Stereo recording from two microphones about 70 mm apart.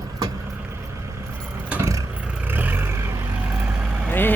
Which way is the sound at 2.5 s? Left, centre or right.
Right.